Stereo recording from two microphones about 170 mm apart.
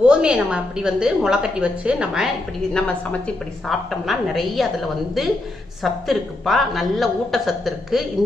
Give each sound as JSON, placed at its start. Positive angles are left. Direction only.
{"t": 0.0, "sound": "a woman's voice", "side_deg": -5}
{"t": 3.6, "sound": "a woman's voice", "side_deg": 0}